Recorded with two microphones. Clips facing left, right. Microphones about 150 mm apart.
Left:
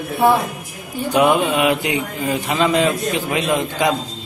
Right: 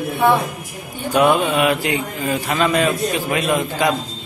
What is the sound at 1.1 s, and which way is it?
Speech, 15° left (ahead or behind).